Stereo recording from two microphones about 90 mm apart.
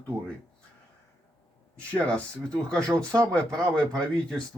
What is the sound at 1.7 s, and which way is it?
Speech, 15° left (ahead or behind).